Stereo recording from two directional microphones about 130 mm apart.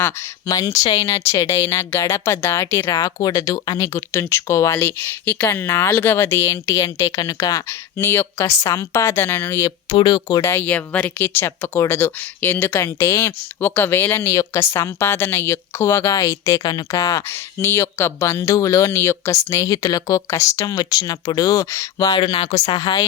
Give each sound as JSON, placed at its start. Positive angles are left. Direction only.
{"t": 0.0, "sound": "speech", "side_deg": 25}